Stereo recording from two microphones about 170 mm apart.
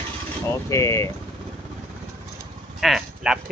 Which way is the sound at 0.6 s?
20° left (ahead or behind).